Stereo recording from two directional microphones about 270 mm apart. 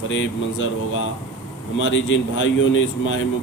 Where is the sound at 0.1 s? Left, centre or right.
Left.